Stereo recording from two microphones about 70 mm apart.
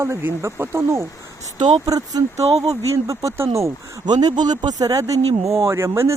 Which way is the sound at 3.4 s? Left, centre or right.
Right.